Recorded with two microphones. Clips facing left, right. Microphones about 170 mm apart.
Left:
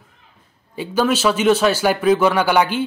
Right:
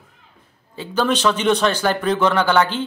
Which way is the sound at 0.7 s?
10° left (ahead or behind).